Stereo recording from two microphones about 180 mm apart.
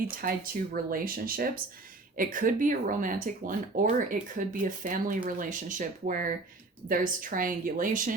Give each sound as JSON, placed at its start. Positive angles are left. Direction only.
{"t": 0.2, "sound": "speech", "side_deg": -50}